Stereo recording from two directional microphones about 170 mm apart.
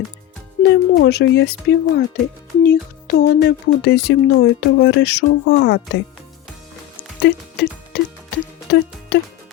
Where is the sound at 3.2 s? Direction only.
80° left.